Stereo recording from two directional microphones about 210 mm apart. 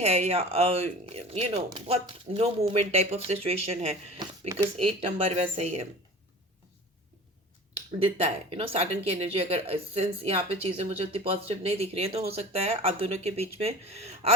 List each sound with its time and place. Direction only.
0.0 s speech: 30° right (ahead or behind)
8.0 s speech: 30° right (ahead or behind)